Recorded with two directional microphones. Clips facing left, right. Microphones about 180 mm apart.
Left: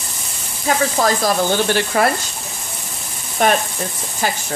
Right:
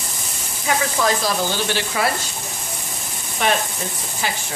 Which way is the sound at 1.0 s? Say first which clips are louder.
Left 3 dB; 50° left (ahead or behind).